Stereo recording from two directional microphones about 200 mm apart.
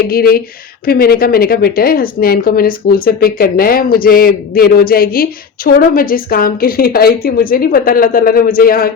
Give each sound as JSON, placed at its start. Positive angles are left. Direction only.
{"t": 0.1, "sound": "a woman's voice", "side_deg": 50}